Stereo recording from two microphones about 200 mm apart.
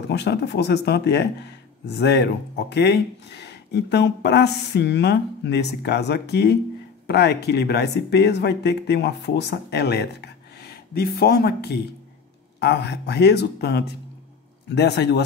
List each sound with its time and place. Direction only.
0.1 s speech: 55° left (ahead or behind)